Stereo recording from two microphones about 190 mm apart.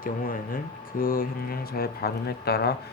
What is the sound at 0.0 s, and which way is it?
Speech, 50° left (ahead or behind).